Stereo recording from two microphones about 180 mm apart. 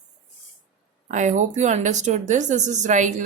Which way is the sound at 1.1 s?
40° right (ahead or behind).